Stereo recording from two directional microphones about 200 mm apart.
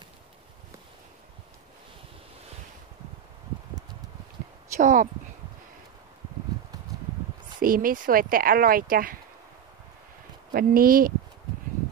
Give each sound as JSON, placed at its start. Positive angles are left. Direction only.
{"t": 4.7, "sound": "speech", "side_deg": -40}
{"t": 7.6, "sound": "speech", "side_deg": -45}
{"t": 10.5, "sound": "speech", "side_deg": -45}